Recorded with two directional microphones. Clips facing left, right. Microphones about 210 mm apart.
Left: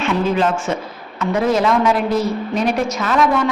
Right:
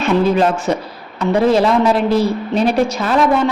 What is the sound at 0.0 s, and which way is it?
A woman's voice, 40° right (ahead or behind).